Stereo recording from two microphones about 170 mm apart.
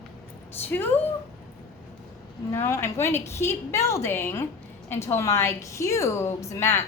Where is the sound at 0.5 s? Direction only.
10° left (ahead or behind).